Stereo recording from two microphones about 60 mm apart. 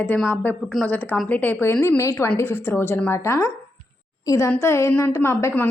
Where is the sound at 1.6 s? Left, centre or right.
Left.